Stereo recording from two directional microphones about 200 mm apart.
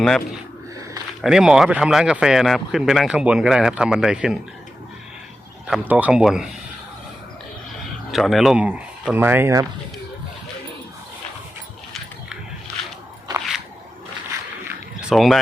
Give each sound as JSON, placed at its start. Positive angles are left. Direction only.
{"t": 0.0, "sound": "speech", "side_deg": 0}
{"t": 5.6, "sound": "speech", "side_deg": -5}
{"t": 8.1, "sound": "speech", "side_deg": 0}
{"t": 13.3, "sound": "squish", "side_deg": -20}
{"t": 15.1, "sound": "speech", "side_deg": 0}